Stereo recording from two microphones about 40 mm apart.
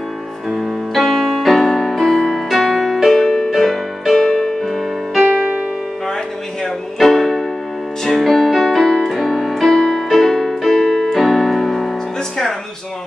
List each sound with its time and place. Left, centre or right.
0.5 s music: centre
4.5 s music: centre
4.7 s music: centre
7.0 s music: centre
8.8 s keyboard: centre
9.1 s music: centre
10.0 s music: centre
10.8 s keyboard: centre
11.1 s keyboard: centre